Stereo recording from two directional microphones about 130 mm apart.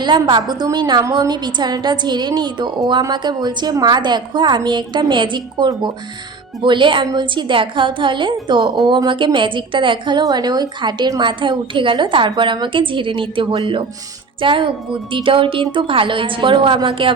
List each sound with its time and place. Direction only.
0.0 s a woman's voice: 35° right (ahead or behind)